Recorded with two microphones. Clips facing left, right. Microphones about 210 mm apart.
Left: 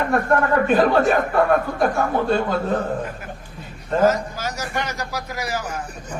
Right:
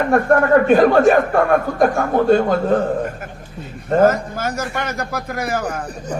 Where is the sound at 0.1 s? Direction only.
50° right (ahead or behind).